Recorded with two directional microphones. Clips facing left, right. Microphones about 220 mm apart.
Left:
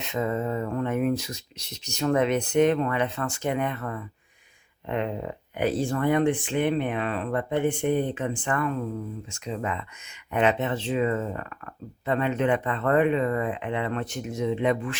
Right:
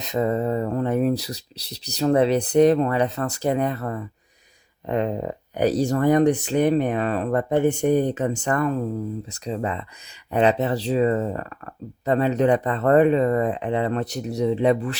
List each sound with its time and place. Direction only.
0.0 s speech: 35° right (ahead or behind)